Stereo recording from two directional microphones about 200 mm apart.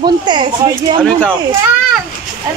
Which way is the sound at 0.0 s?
20° right (ahead or behind).